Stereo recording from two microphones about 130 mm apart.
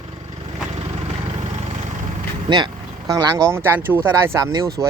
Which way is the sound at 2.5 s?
35° right (ahead or behind).